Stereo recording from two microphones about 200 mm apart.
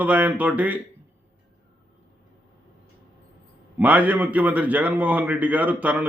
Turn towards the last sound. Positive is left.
turn(degrees=-10)  # may be behind; listen again after turning